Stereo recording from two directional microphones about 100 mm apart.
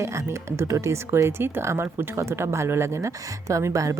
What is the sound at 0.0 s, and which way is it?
Speech, 30° right (ahead or behind).